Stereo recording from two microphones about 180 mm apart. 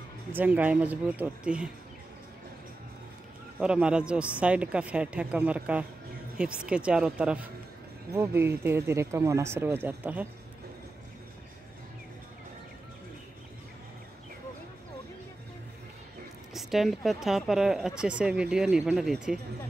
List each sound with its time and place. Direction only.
0.3 s speech: 10° right (ahead or behind)
3.5 s a woman's voice: 5° right (ahead or behind)
16.5 s a woman's voice: centre (ahead or behind)